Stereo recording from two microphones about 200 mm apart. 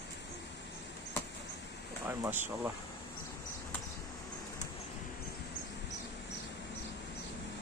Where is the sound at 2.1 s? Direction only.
10° right (ahead or behind).